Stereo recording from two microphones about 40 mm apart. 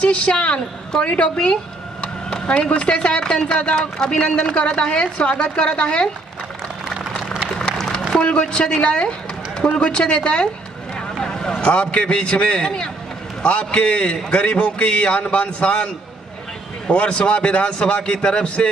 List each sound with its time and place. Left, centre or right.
0.0 s a man's voice: left
8.4 s a man's voice: left
11.0 s vehicle: centre
11.6 s a man's voice: left
16.9 s a man's voice: left